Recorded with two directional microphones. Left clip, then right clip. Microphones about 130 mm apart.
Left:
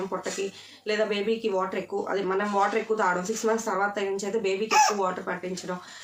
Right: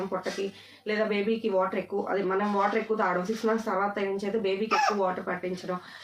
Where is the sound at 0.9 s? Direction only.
30° left (ahead or behind).